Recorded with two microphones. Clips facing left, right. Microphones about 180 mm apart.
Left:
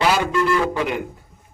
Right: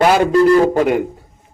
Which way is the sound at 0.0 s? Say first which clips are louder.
Right 8 dB; 50° right (ahead or behind).